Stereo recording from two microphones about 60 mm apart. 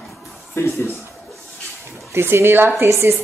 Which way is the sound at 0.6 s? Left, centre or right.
Left.